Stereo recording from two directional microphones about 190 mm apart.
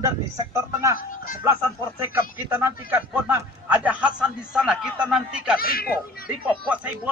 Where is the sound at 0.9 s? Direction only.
45° left (ahead or behind).